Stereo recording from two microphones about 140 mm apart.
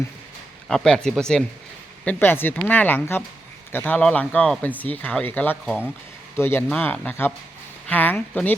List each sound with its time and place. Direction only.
0.7 s speech: 5° left (ahead or behind)
2.0 s speech: 15° left (ahead or behind)